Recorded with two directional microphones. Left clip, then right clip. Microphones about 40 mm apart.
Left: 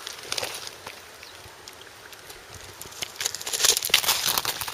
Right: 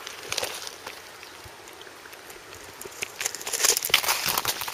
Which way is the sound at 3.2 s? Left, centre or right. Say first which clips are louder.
Left 2 dB; left.